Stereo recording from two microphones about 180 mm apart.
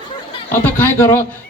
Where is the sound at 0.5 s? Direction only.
10° left (ahead or behind).